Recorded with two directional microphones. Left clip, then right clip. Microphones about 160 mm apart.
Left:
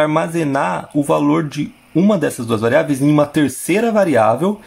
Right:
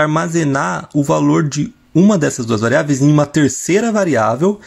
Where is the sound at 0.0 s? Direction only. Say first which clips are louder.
Right 1 dB; 20° right (ahead or behind).